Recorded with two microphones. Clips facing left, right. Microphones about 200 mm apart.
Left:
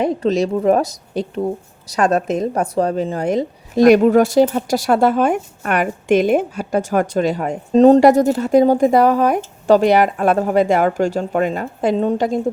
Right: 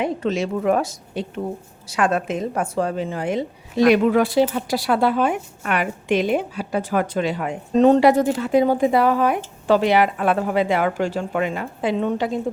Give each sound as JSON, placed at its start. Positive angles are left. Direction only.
{"t": 0.0, "sound": "a woman's voice", "side_deg": 40}